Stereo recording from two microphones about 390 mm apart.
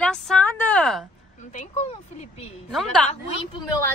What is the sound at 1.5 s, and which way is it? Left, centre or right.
Speech, centre.